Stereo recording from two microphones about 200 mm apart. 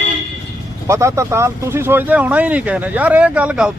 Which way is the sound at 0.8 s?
15° right (ahead or behind).